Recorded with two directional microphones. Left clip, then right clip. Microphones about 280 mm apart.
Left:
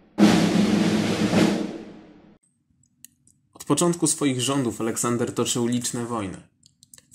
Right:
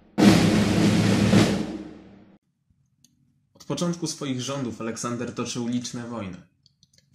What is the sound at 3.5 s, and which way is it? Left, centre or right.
Speech, left.